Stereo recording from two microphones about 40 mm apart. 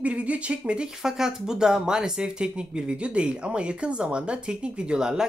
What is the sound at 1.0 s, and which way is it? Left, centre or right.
Speech, centre.